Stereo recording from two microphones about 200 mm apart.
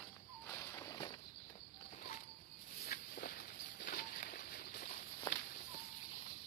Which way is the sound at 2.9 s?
50° left (ahead or behind).